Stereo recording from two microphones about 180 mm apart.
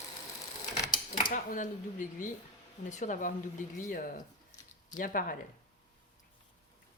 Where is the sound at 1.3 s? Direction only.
45° left (ahead or behind).